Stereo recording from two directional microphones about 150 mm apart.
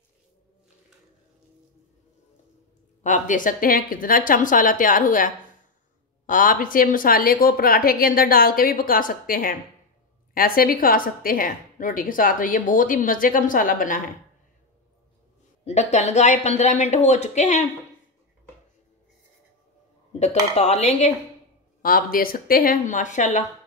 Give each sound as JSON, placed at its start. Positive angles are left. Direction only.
{"t": 3.0, "sound": "a woman's voice", "side_deg": 60}
{"t": 15.6, "sound": "speech", "side_deg": 50}
{"t": 20.2, "sound": "speech", "side_deg": 45}
{"t": 21.8, "sound": "a woman's voice", "side_deg": 70}